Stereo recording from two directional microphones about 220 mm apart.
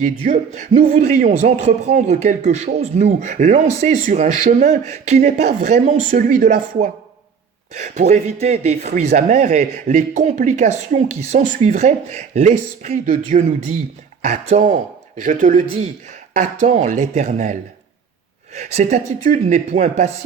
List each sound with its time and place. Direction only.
0.0 s a man's voice: 35° right (ahead or behind)
8.9 s a man's voice: 40° right (ahead or behind)